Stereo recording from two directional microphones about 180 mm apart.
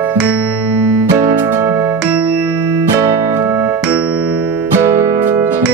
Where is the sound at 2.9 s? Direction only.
10° right (ahead or behind).